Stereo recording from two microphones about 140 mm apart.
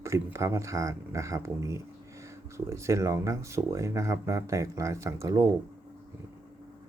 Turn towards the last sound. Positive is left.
turn(degrees=-20)  # may be behind; listen again after turning